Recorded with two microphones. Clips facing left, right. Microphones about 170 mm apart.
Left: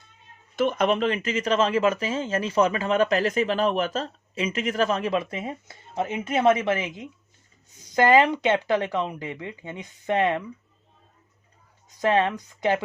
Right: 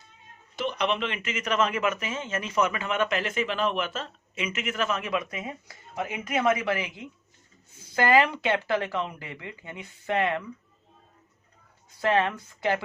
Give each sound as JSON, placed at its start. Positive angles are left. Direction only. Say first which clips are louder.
{"t": 0.5, "sound": "speech", "louder": "left 6 dB", "side_deg": 50}
{"t": 11.9, "sound": "speech", "louder": "left 3 dB", "side_deg": 20}